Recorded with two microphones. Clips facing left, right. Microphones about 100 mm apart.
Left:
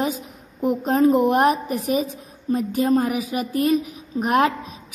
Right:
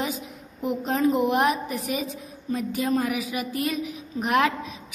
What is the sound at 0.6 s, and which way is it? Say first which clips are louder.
A woman's voice: left 6 dB; 45° left (ahead or behind).